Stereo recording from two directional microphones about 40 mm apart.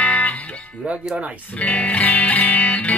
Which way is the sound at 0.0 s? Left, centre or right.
Left.